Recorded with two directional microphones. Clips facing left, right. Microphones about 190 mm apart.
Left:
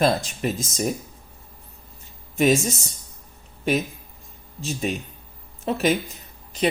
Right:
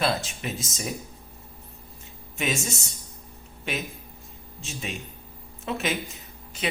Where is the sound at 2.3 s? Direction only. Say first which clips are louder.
Left 10 dB; 40° left (ahead or behind).